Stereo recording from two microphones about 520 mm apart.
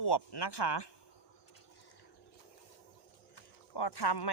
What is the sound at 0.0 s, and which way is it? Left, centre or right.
Speech, left.